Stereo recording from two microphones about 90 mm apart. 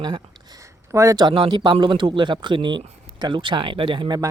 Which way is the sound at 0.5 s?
35° right (ahead or behind).